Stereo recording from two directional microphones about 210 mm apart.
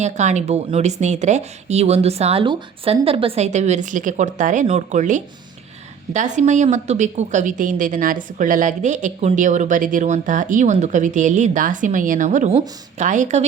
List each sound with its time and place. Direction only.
0.0 s a woman's voice: 35° right (ahead or behind)